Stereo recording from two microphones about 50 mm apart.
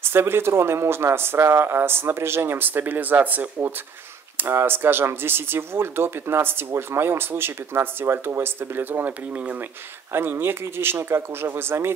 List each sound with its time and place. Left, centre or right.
0.0 s speech: right
4.4 s speech: right
9.3 s speech: right
10.1 s speech: right